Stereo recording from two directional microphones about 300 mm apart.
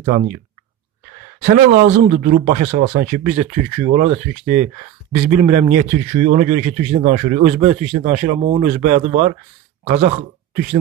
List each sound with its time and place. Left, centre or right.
1.4 s a man's voice: right